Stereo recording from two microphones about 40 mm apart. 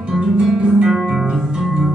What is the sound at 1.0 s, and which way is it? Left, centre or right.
Music, centre.